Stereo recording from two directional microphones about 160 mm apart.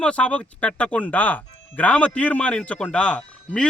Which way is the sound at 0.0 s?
5° left (ahead or behind).